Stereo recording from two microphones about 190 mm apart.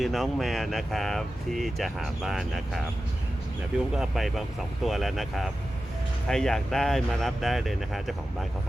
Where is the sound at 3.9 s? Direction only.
Centre (ahead or behind).